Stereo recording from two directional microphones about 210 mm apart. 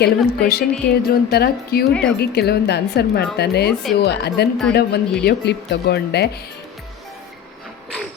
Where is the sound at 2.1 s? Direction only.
50° left (ahead or behind).